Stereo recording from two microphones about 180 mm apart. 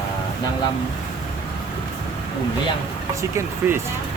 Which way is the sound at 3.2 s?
15° right (ahead or behind).